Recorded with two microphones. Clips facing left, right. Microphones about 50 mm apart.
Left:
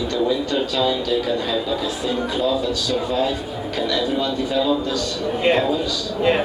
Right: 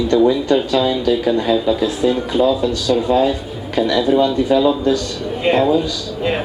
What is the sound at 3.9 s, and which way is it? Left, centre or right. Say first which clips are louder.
Speech: right 8 dB; centre.